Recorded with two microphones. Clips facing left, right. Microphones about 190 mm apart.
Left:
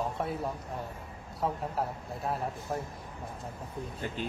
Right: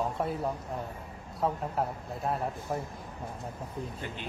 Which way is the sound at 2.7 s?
Centre (ahead or behind).